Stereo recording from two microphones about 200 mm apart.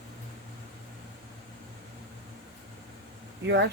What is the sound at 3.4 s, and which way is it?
Speech, 60° right (ahead or behind).